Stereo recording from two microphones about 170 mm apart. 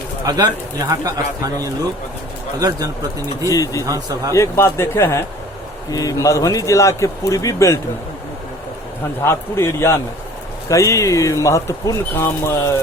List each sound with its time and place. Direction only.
0.3 s speech: 25° right (ahead or behind)
2.6 s speech: 20° right (ahead or behind)
3.5 s speech: 20° left (ahead or behind)
3.8 s speech: 20° right (ahead or behind)
4.4 s speech: 15° left (ahead or behind)
9.2 s speech: 15° left (ahead or behind)